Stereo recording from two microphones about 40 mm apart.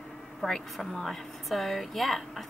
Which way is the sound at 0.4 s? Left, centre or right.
Left.